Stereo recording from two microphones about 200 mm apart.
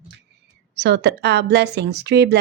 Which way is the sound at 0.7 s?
60° right (ahead or behind).